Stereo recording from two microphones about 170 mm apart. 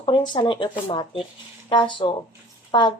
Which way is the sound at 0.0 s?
30° left (ahead or behind).